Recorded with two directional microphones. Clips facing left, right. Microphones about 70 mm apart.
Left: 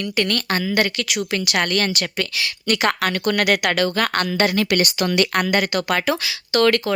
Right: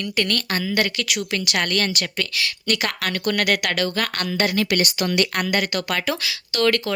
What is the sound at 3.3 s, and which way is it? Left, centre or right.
Speech, centre.